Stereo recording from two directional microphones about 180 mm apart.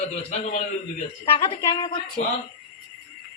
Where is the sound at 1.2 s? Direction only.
30° left (ahead or behind).